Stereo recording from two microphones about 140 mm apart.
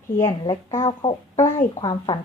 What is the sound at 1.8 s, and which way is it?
Speech, 30° left (ahead or behind).